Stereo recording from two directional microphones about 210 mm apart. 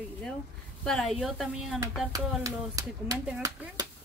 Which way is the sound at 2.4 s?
15° right (ahead or behind).